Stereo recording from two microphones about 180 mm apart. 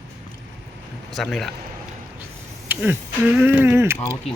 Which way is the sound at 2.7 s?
10° right (ahead or behind).